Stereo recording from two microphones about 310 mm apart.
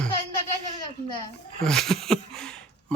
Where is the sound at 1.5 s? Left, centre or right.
Centre.